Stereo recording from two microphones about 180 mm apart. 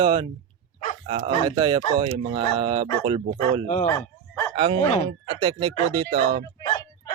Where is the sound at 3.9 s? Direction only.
15° left (ahead or behind).